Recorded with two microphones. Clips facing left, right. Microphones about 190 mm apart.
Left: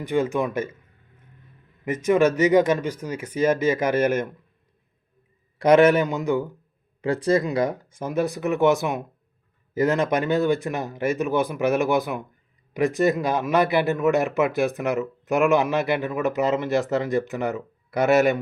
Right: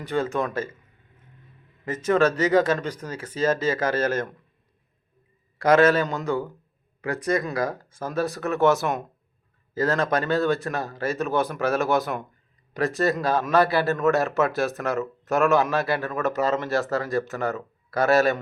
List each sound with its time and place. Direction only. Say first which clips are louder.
0.0 s speech: left 3 dB; 15° left (ahead or behind)
1.8 s speech: left 2 dB; 15° left (ahead or behind)
5.5 s speech: left 2 dB; 20° left (ahead or behind)
7.0 s speech: left 4 dB; 30° left (ahead or behind)